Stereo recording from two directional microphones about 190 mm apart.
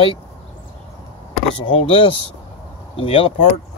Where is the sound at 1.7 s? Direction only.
30° left (ahead or behind).